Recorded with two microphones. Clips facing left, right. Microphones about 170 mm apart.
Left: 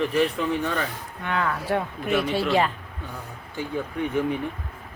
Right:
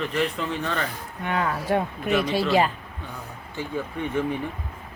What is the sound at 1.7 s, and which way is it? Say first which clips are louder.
Speech: right 2 dB; 15° right (ahead or behind).